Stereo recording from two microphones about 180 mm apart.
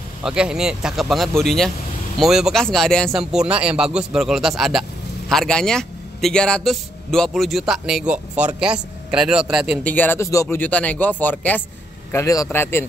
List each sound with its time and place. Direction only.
0.2 s a man's voice: 5° right (ahead or behind)
9.8 s speech: 10° left (ahead or behind)